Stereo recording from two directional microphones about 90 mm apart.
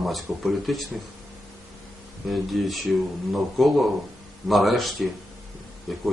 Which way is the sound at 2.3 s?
Centre (ahead or behind).